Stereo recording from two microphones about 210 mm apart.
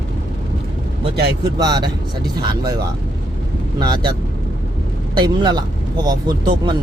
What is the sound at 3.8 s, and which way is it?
Speech, 20° right (ahead or behind).